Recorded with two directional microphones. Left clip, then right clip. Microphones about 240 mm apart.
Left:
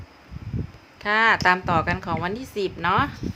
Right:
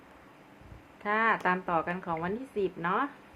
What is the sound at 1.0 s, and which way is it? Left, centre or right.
A woman's voice, left.